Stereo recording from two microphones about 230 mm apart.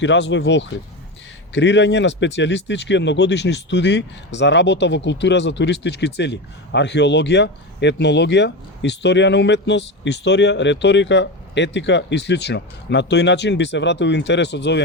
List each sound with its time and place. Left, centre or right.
0.0 s speech: left